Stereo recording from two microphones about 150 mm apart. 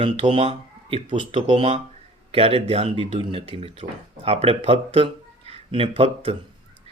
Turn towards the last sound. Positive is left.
turn(degrees=-40)  # may be behind; listen again after turning